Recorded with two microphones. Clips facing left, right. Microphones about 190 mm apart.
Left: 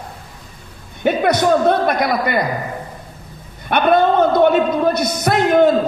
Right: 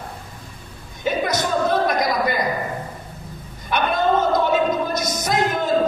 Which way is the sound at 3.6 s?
60° left (ahead or behind).